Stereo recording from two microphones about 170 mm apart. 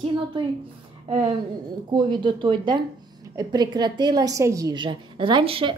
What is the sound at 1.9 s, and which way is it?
A woman's voice, 25° right (ahead or behind).